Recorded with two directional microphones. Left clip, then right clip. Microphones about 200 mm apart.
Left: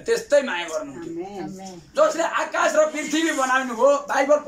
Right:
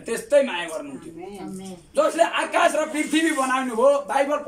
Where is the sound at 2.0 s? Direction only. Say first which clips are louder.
Even; 15° right (ahead or behind).